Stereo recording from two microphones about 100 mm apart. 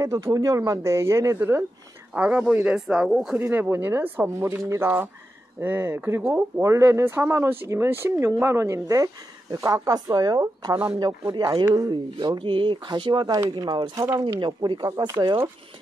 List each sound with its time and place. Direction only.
0.0 s speech: 35° right (ahead or behind)
2.1 s speech: 15° right (ahead or behind)
3.3 s speech: 20° right (ahead or behind); by 15.4 s 45° right (ahead or behind)